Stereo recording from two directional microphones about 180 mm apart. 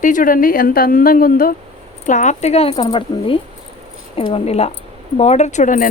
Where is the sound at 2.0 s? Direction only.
45° left (ahead or behind).